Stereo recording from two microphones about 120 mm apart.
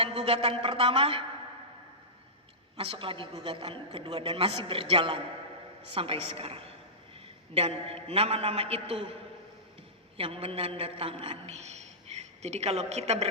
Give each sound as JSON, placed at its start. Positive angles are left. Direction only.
{"t": 0.0, "sound": "a woman's voice", "side_deg": -50}
{"t": 2.7, "sound": "a woman's voice", "side_deg": -50}
{"t": 10.2, "sound": "a woman's voice", "side_deg": -50}
{"t": 11.4, "sound": "a woman's voice", "side_deg": -70}